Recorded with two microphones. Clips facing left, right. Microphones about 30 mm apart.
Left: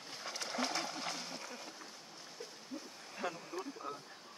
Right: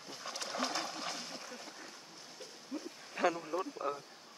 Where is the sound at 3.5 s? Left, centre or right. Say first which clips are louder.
Right 6 dB; right.